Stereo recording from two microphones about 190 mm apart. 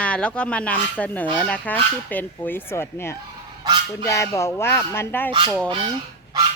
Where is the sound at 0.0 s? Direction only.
5° left (ahead or behind).